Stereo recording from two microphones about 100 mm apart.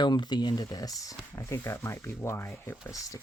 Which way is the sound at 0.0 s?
45° left (ahead or behind).